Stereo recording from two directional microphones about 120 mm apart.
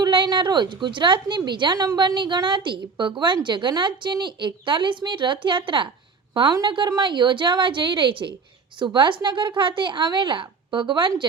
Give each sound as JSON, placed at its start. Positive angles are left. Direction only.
{"t": 0.0, "sound": "a woman's voice", "side_deg": -40}